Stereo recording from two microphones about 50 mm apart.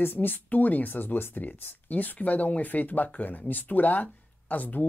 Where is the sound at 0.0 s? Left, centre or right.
Left.